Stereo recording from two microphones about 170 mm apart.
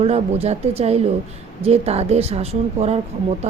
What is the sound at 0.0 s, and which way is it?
A woman's voice, 35° right (ahead or behind).